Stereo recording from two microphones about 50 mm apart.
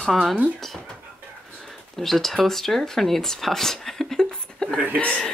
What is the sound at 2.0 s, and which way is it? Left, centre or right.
Speech, centre.